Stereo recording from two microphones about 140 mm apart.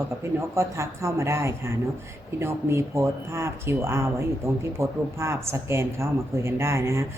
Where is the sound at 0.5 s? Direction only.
20° right (ahead or behind).